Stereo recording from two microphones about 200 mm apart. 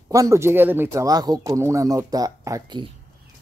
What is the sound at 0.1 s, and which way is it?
Speech, 15° right (ahead or behind).